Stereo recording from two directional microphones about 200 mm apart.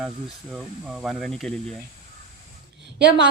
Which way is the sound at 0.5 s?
Centre (ahead or behind).